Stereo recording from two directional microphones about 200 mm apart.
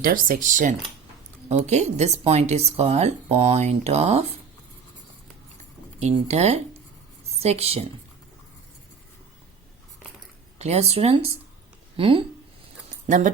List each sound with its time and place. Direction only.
0.0 s speech: 45° right (ahead or behind)
6.0 s speech: 35° right (ahead or behind)
10.6 s speech: 30° right (ahead or behind)
13.1 s speech: 40° right (ahead or behind)